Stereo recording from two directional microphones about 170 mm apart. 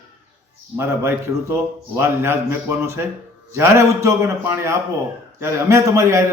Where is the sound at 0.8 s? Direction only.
15° right (ahead or behind).